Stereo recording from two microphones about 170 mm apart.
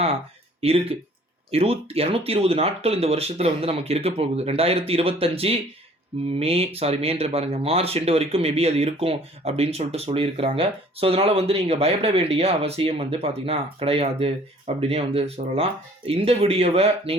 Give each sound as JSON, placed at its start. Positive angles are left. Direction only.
{"t": 0.6, "sound": "speech", "side_deg": -35}